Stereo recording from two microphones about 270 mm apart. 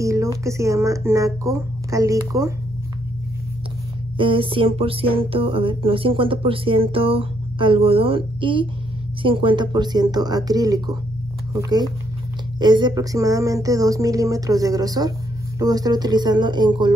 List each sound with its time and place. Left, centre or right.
0.0 s speech: centre
4.2 s a sound: centre
9.2 s speech: centre